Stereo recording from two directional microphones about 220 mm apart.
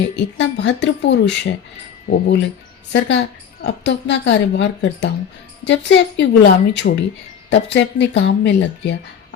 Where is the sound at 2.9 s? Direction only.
55° left (ahead or behind).